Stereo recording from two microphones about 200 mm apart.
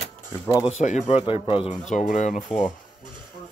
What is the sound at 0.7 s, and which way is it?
Speech, 35° left (ahead or behind).